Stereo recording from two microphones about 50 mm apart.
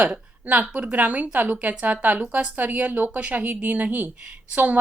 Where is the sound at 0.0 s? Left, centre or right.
Right.